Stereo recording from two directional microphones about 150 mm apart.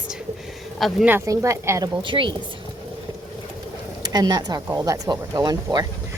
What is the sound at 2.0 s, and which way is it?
Speech, 35° right (ahead or behind).